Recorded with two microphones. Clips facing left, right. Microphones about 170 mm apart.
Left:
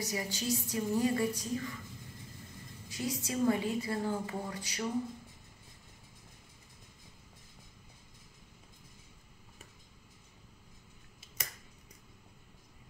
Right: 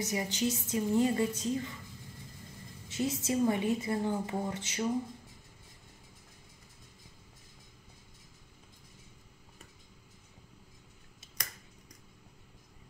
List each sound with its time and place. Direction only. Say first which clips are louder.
0.0 s a woman's voice: right 4 dB; 20° right (ahead or behind)
2.9 s a woman's voice: right 5 dB; 25° right (ahead or behind)